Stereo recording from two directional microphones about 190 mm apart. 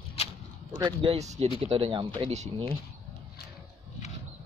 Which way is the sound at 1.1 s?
35° right (ahead or behind).